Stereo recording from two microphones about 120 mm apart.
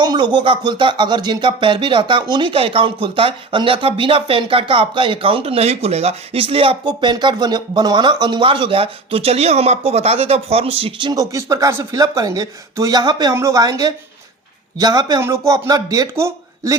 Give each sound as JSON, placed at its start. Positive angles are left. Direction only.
{"t": 0.0, "sound": "speech", "side_deg": -40}
{"t": 6.8, "sound": "speech", "side_deg": -35}
{"t": 11.1, "sound": "speech", "side_deg": -30}